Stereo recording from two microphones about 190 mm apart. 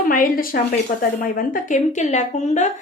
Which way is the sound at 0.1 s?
45° left (ahead or behind).